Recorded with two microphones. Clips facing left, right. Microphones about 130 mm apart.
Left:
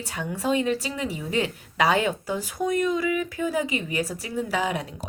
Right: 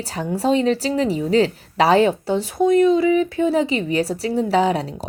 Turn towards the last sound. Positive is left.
turn(degrees=-35)  # may be behind; listen again after turning